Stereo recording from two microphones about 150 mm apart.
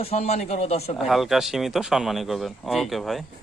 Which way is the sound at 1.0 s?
Centre (ahead or behind).